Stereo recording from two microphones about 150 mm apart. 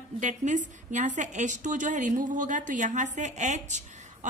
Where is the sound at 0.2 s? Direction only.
55° right (ahead or behind).